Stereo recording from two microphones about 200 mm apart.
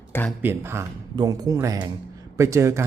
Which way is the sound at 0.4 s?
10° right (ahead or behind).